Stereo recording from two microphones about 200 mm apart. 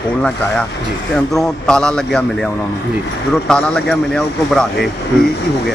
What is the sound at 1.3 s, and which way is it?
Speech, 5° left (ahead or behind).